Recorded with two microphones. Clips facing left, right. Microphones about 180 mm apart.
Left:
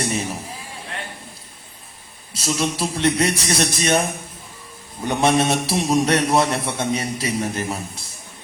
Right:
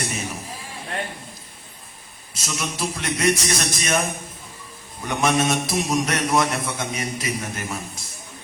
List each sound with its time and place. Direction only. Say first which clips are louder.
0.0 s a sound: left 5 dB; 30° left (ahead or behind)
2.3 s a man's voice: left 7 dB; 30° left (ahead or behind)
5.0 s a man's voice: left 3 dB; 30° left (ahead or behind)